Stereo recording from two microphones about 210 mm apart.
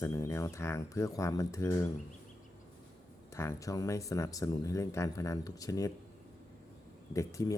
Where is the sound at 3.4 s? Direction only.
15° left (ahead or behind).